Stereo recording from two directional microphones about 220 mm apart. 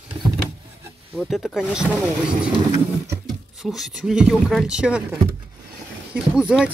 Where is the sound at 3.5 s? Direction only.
Centre (ahead or behind).